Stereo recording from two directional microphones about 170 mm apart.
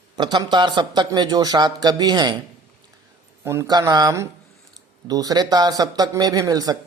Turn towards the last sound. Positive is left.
turn(degrees=-20)  # may be behind; listen again after turning